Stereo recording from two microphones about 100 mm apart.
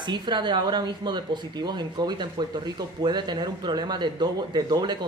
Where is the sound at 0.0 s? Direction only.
50° right (ahead or behind).